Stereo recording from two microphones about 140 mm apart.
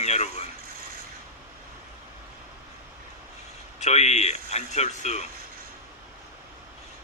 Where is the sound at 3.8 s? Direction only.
55° left (ahead or behind).